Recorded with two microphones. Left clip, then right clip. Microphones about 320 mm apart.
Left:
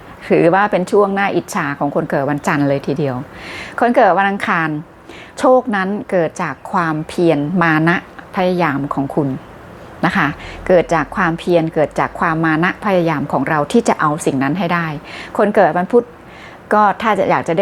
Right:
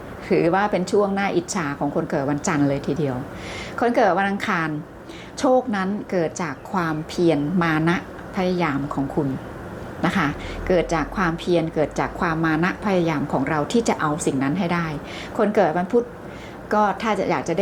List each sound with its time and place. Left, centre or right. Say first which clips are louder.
0.3 s a woman's voice: left 7 dB; left
10.0 s a woman's voice: left 7 dB; left